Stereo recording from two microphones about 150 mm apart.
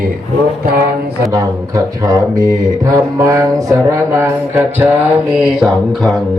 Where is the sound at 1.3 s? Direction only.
20° right (ahead or behind).